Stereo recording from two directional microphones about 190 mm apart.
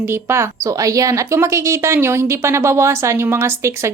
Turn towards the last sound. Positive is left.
turn(degrees=-15)  # may be behind; listen again after turning